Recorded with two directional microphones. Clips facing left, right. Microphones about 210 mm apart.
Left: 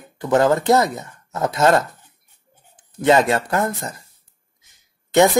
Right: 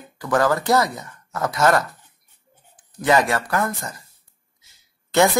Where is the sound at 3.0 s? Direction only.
25° left (ahead or behind).